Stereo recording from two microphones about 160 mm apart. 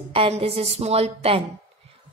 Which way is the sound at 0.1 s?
35° right (ahead or behind).